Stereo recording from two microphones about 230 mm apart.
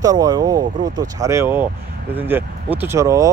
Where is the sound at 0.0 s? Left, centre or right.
Centre.